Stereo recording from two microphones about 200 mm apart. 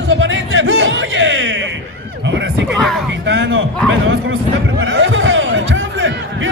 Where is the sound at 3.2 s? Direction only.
65° right (ahead or behind).